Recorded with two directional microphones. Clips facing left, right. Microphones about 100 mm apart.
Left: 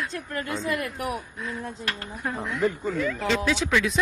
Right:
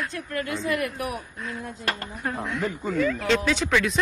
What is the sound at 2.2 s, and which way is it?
Speech, centre (ahead or behind).